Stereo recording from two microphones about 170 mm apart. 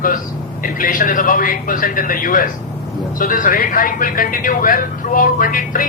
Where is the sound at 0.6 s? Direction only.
55° left (ahead or behind).